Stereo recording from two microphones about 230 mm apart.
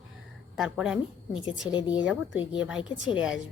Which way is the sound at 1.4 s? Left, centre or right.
Left.